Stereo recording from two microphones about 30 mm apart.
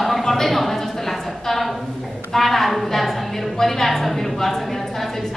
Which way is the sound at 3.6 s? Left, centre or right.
Centre.